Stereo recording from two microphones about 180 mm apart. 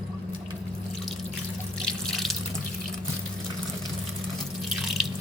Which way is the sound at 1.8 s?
Centre (ahead or behind).